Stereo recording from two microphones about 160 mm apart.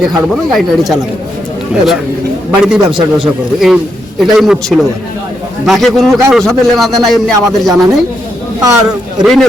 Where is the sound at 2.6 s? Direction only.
5° right (ahead or behind).